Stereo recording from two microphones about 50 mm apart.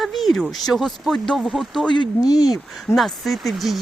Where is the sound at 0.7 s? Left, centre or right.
Right.